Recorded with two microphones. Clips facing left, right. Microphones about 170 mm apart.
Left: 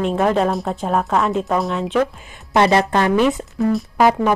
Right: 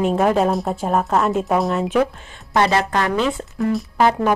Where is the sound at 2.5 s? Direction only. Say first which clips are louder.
Left 3 dB; 20° left (ahead or behind).